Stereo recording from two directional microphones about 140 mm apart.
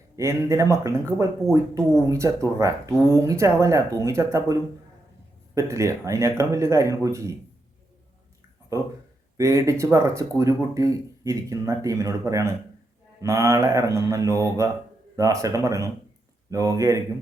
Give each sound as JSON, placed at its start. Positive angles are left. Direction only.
{"t": 0.2, "sound": "speech", "side_deg": -20}
{"t": 5.5, "sound": "speech", "side_deg": -20}
{"t": 8.7, "sound": "speech", "side_deg": -25}